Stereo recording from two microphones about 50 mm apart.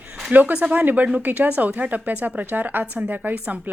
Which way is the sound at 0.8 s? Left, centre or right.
Right.